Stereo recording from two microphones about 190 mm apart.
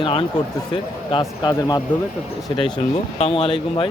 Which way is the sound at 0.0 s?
25° left (ahead or behind).